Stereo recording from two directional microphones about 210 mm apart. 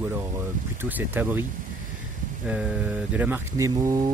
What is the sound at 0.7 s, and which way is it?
Speech, 10° right (ahead or behind).